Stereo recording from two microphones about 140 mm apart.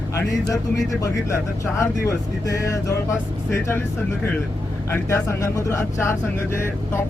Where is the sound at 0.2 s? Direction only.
25° left (ahead or behind).